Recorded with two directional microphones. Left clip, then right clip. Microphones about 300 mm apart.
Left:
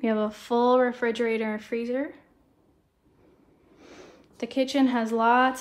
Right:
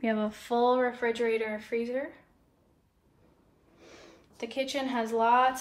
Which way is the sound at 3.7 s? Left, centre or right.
Left.